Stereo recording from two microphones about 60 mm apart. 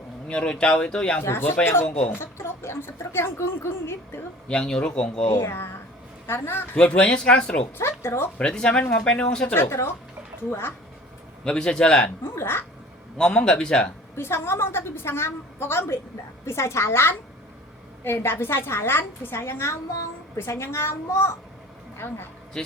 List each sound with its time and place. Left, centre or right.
0.3 s speech: centre
1.2 s speech: left
1.8 s speech: left
4.4 s speech: centre
5.3 s a woman's voice: left
6.7 s speech: centre
7.8 s speech: left
8.4 s speech: centre
9.5 s a woman's voice: left
11.4 s speech: centre
12.2 s speech: left
13.1 s speech: centre
14.2 s a woman's voice: left
22.5 s speech: centre